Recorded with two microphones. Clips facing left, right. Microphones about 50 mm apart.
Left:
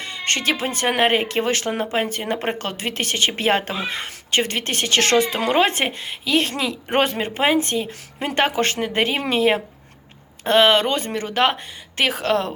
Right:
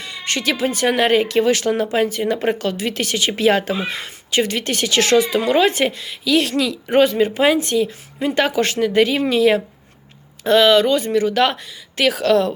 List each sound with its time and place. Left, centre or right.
0.0 s speech: left
2.0 s speech: left
6.9 s speech: left
7.4 s speech: left
8.2 s speech: left